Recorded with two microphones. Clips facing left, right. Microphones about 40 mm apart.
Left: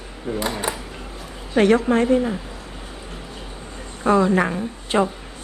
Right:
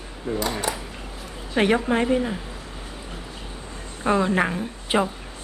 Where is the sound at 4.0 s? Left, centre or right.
Centre.